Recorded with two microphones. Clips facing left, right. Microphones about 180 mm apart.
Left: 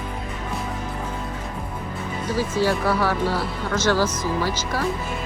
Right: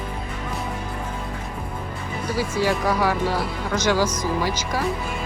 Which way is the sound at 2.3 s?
10° right (ahead or behind).